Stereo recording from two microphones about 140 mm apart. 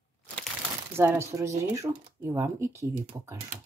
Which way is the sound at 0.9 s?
15° right (ahead or behind).